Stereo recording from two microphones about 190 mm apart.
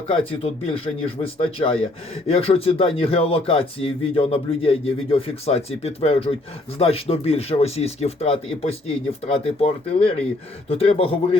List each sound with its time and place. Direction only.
0.1 s speech: 30° left (ahead or behind)